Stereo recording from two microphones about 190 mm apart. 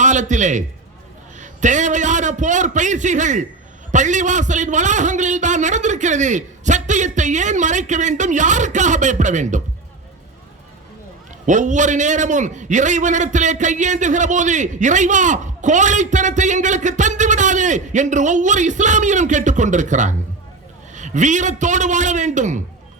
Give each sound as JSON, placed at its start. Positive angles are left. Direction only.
{"t": 0.0, "sound": "a man's voice", "side_deg": -40}
{"t": 11.4, "sound": "a man's voice", "side_deg": -40}